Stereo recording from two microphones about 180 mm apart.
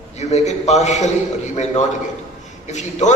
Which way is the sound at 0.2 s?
40° left (ahead or behind).